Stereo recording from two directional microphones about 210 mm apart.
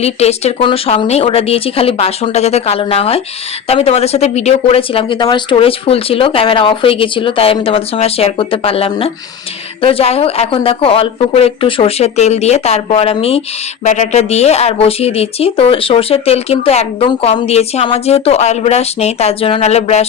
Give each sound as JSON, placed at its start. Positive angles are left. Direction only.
{"t": 0.0, "sound": "speech", "side_deg": 30}